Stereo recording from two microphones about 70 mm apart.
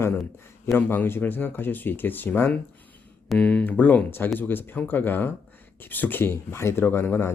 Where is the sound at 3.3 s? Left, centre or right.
Centre.